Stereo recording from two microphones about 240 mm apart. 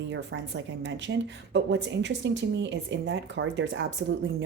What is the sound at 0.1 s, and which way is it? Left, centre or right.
Speech, right.